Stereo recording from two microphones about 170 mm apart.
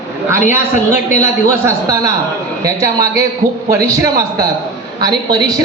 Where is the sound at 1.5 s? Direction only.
20° right (ahead or behind).